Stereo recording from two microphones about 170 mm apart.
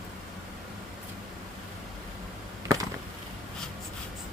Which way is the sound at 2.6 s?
20° right (ahead or behind).